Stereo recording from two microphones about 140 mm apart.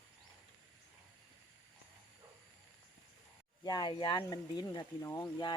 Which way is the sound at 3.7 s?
30° left (ahead or behind).